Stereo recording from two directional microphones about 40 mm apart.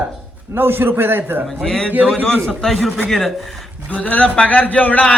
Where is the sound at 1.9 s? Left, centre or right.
Right.